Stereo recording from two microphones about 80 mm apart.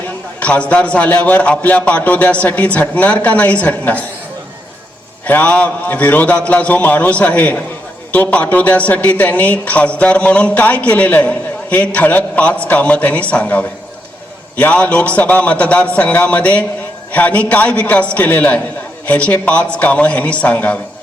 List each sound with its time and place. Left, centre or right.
0.3 s a woman's voice: centre
5.2 s a woman's voice: centre